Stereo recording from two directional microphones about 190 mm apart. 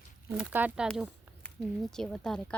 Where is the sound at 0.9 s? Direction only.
5° left (ahead or behind).